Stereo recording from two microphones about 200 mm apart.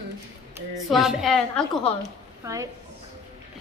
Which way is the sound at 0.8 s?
Centre (ahead or behind).